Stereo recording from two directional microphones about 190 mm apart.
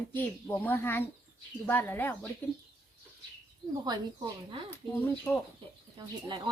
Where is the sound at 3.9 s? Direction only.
25° right (ahead or behind).